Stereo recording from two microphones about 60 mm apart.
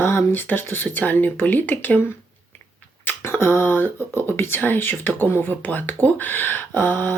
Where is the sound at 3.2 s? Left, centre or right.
Left.